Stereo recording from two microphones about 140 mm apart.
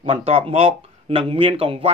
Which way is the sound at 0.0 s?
45° right (ahead or behind).